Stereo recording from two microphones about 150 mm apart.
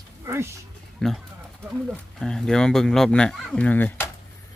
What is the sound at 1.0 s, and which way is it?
Speech, 5° left (ahead or behind).